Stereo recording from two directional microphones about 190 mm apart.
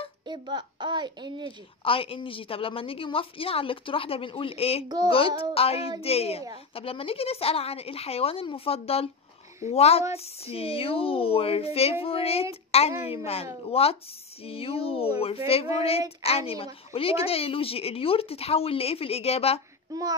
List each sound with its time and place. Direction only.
0.3 s a woman's voice: 25° right (ahead or behind)
1.9 s a woman's voice: 30° left (ahead or behind)
4.8 s a woman's voice: 20° right (ahead or behind)
5.5 s speech: 30° left (ahead or behind)
19.9 s a woman's voice: 20° right (ahead or behind)